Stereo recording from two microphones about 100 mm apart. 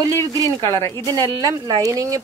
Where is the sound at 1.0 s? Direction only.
40° right (ahead or behind).